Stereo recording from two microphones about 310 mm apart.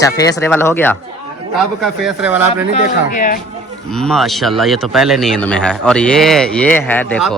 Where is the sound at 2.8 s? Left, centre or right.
Left.